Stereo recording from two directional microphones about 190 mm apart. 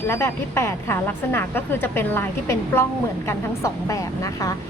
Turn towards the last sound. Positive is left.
turn(degrees=15)  # may be behind; listen again after turning